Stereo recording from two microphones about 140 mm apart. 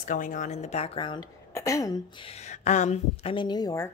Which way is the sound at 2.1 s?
45° left (ahead or behind).